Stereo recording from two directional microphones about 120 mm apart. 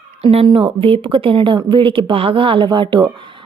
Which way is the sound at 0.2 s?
55° right (ahead or behind).